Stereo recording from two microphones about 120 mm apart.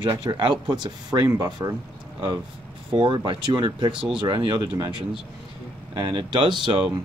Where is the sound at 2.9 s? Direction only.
45° right (ahead or behind).